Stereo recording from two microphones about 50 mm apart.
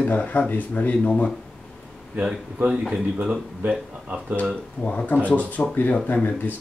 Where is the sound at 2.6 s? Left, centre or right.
Right.